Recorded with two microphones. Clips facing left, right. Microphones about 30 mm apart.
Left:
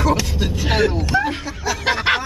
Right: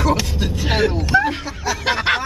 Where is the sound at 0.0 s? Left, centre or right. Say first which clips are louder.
Even; centre.